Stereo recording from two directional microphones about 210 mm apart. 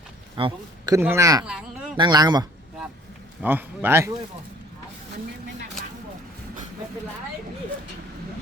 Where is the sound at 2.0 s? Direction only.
20° right (ahead or behind).